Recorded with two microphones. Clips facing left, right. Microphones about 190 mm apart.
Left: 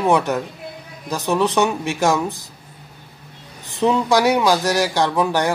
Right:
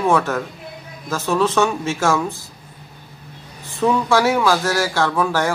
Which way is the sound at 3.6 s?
20° left (ahead or behind).